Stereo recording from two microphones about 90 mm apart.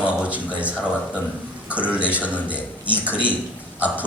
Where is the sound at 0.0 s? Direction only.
15° right (ahead or behind).